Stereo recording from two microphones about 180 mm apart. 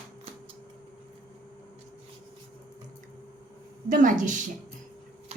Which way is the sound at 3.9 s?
45° right (ahead or behind).